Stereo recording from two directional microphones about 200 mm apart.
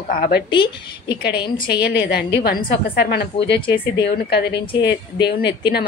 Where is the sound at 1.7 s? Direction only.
55° left (ahead or behind).